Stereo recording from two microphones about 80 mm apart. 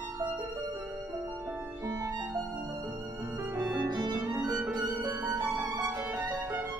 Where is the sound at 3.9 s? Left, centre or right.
Right.